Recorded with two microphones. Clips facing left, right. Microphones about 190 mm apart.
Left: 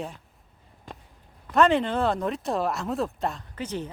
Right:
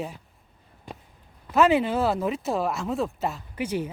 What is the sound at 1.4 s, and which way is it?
Speech, 5° right (ahead or behind).